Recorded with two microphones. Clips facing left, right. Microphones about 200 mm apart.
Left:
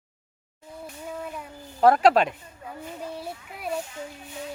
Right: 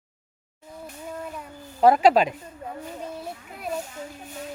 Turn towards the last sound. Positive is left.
turn(degrees=-45)  # may be behind; listen again after turning